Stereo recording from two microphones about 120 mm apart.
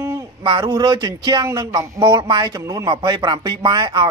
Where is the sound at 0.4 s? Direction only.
35° right (ahead or behind).